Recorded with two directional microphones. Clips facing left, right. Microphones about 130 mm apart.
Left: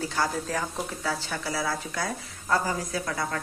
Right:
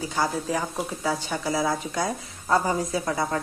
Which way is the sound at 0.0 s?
15° right (ahead or behind).